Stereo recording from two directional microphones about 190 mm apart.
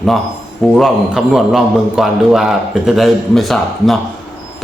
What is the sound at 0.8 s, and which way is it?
A man's voice, centre (ahead or behind).